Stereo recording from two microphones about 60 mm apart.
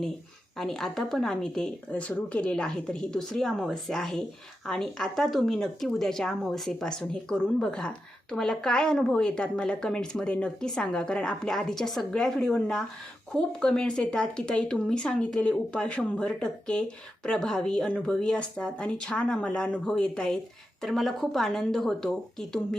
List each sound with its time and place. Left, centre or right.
0.5 s speech: centre
1.9 s speech: left
20.8 s speech: centre